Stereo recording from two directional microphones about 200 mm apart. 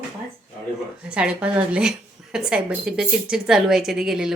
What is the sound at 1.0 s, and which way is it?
A woman's voice, 5° right (ahead or behind).